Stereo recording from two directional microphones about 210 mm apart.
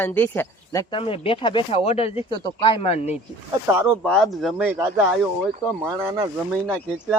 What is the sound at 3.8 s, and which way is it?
Speech, centre (ahead or behind).